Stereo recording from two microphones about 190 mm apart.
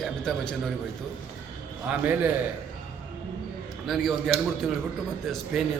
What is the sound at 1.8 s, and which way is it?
Speech, 5° right (ahead or behind).